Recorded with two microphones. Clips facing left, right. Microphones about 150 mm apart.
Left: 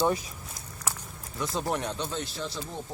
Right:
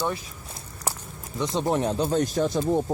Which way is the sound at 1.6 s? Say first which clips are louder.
Right 7 dB; 35° right (ahead or behind).